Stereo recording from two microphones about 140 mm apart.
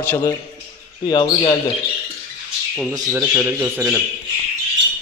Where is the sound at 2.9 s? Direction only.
25° right (ahead or behind).